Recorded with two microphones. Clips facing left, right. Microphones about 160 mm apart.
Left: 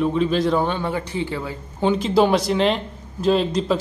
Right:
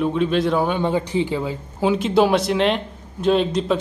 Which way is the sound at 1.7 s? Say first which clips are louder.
Even; 5° right (ahead or behind).